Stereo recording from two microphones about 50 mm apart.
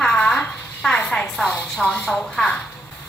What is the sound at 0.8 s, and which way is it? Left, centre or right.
A woman's voice, centre.